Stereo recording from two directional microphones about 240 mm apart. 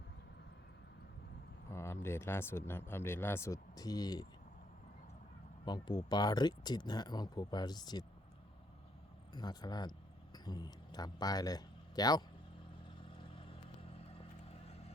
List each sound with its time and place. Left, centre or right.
1.7 s speech: centre
5.6 s speech: centre
9.3 s speech: centre